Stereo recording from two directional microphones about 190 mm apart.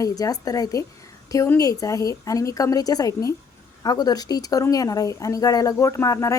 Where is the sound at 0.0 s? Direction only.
20° left (ahead or behind).